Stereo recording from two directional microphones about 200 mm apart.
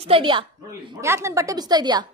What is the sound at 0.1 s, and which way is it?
Speech, 25° right (ahead or behind).